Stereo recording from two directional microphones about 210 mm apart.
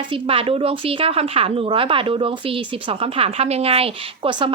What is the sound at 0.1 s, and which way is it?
Speech, 25° right (ahead or behind).